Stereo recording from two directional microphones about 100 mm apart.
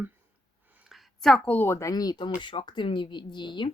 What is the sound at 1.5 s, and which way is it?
Speech, 20° left (ahead or behind).